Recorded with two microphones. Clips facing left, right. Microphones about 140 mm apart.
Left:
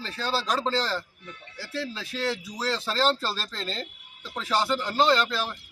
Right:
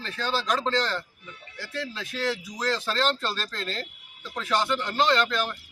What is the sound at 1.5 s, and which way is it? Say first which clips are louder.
Speech: left 1 dB; 30° left (ahead or behind).